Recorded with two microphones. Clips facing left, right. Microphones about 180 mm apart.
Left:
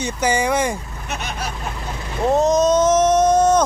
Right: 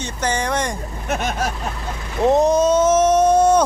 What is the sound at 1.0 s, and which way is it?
Speech, 50° right (ahead or behind).